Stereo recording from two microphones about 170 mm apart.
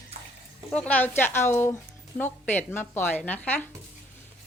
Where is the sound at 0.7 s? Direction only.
10° left (ahead or behind).